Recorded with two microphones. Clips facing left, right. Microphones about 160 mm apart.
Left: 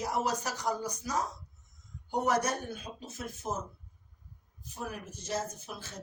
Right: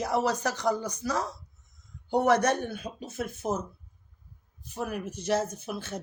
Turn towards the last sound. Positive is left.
turn(degrees=-65)  # may be behind; listen again after turning